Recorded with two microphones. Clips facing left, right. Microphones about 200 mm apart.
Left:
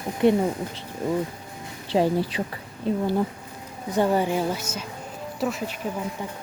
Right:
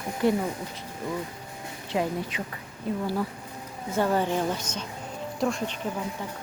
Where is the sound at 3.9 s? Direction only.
15° left (ahead or behind).